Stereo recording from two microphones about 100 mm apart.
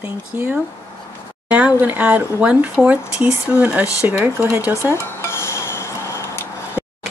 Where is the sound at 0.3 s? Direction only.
20° right (ahead or behind).